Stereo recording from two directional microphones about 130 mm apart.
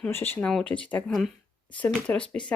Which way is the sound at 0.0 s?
15° left (ahead or behind).